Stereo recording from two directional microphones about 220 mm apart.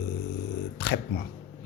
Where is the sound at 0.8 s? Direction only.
45° left (ahead or behind).